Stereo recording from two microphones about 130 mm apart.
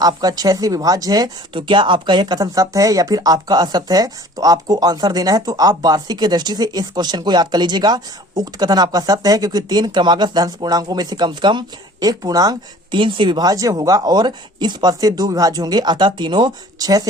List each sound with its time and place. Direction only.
0.0 s a woman's voice: 30° right (ahead or behind)